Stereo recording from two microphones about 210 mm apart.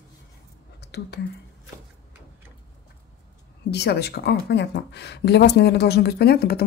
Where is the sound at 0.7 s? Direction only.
50° left (ahead or behind).